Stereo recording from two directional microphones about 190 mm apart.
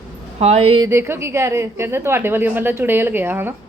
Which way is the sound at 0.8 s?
15° right (ahead or behind).